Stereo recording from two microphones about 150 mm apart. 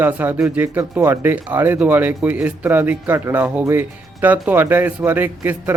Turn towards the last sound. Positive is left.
turn(degrees=-15)  # may be behind; listen again after turning